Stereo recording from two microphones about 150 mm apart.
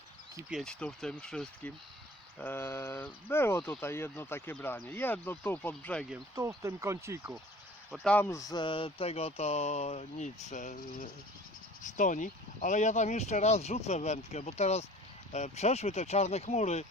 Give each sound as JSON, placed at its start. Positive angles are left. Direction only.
{"t": 0.5, "sound": "speech", "side_deg": 5}
{"t": 2.4, "sound": "speech", "side_deg": 15}
{"t": 6.3, "sound": "speech", "side_deg": -20}
{"t": 7.9, "sound": "speech", "side_deg": 0}
{"t": 8.1, "sound": "speech", "side_deg": 20}
{"t": 11.8, "sound": "speech", "side_deg": 60}